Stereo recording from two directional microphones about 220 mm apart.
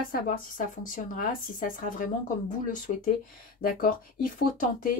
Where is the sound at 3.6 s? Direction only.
40° left (ahead or behind).